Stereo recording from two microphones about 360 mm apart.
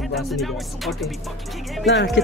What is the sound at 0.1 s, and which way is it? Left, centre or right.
Speech, centre.